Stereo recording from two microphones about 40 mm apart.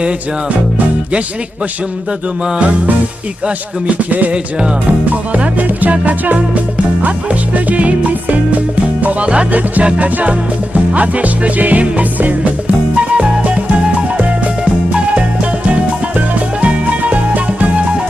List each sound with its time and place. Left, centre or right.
4.1 s music: right